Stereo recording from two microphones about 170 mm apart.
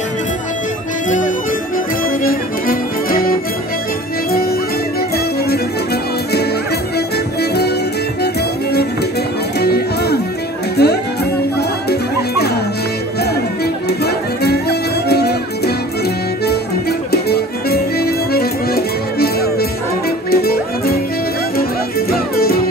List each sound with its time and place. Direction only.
2.2 s music: 60° left (ahead or behind)
9.6 s music: 70° left (ahead or behind)
13.8 s music: 70° left (ahead or behind)
17.1 s music: 70° left (ahead or behind)
22.1 s music: 60° left (ahead or behind)